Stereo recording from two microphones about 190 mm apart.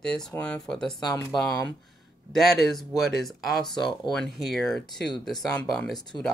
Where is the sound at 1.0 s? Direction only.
20° left (ahead or behind).